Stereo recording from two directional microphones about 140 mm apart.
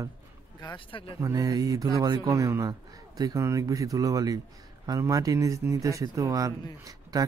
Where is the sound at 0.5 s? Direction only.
30° left (ahead or behind).